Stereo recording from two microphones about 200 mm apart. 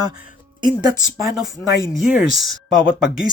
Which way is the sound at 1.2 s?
Centre (ahead or behind).